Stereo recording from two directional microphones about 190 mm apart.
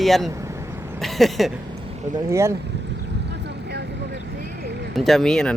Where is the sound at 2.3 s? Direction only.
15° right (ahead or behind).